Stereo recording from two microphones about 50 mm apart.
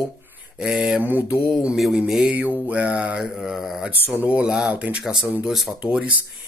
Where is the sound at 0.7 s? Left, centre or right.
Right.